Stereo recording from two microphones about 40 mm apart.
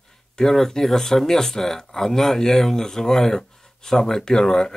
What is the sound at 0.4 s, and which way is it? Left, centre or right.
Speech, centre.